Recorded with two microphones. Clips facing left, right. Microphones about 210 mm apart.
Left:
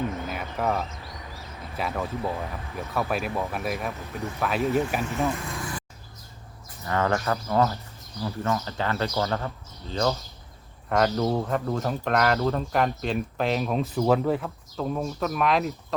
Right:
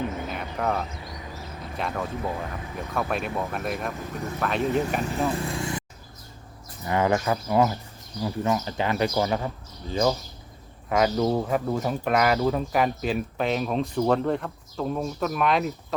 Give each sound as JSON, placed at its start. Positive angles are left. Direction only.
{"t": 0.3, "sound": "a sound", "side_deg": 5}
{"t": 1.7, "sound": "speech", "side_deg": 0}
{"t": 5.3, "sound": "speech", "side_deg": -30}
{"t": 6.8, "sound": "speech", "side_deg": -15}